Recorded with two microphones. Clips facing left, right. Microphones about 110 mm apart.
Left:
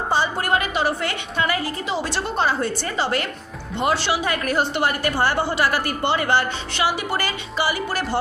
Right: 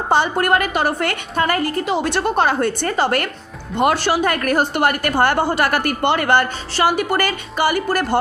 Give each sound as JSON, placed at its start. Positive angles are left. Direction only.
{"t": 0.1, "sound": "a woman's voice", "side_deg": -60}